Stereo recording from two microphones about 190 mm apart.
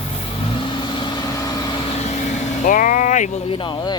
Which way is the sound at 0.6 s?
25° left (ahead or behind).